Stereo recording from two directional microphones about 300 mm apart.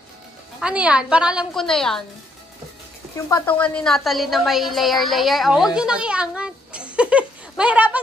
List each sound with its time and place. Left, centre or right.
0.6 s a woman's voice: centre
3.2 s a woman's voice: centre